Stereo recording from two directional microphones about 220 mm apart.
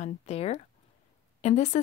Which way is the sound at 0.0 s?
30° left (ahead or behind).